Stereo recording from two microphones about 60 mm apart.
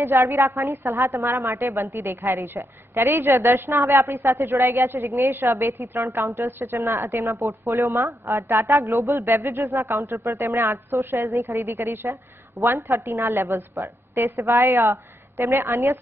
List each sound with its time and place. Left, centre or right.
0.0 s a woman's voice: right
11.2 s a woman's voice: right